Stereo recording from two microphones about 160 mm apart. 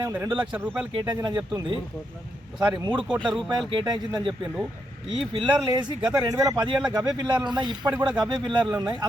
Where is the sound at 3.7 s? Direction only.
30° right (ahead or behind).